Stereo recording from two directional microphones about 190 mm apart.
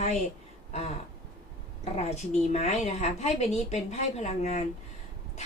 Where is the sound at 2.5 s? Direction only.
35° left (ahead or behind).